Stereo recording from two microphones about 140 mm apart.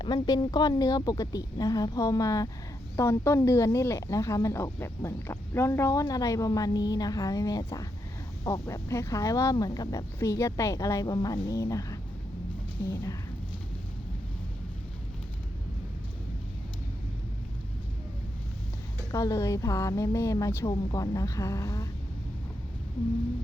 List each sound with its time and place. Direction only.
0.0 s speech: 35° left (ahead or behind)
19.1 s speech: 25° left (ahead or behind)